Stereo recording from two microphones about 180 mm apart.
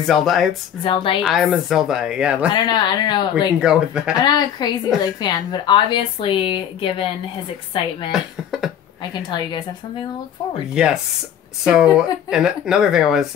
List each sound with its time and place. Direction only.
0.0 s speech: centre (ahead or behind)
0.8 s speech: 30° left (ahead or behind)
1.2 s speech: centre (ahead or behind)
2.5 s speech: 25° left (ahead or behind)
3.6 s speech: 5° right (ahead or behind)
4.2 s speech: 25° left (ahead or behind)
8.1 s speech: 5° right (ahead or behind)
9.1 s speech: 25° left (ahead or behind)
10.7 s speech: 5° right (ahead or behind)